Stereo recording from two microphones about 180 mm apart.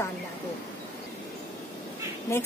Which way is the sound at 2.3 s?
15° left (ahead or behind).